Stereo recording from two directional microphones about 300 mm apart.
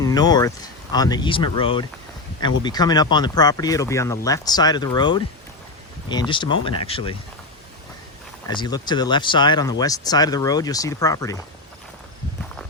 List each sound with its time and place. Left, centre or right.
0.0 s speech: centre
8.4 s speech: centre